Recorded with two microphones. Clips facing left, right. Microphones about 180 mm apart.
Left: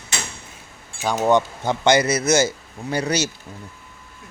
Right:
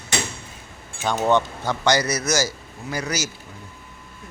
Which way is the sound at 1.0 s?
10° left (ahead or behind).